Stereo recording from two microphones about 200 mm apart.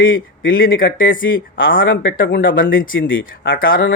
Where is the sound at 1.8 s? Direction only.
65° left (ahead or behind).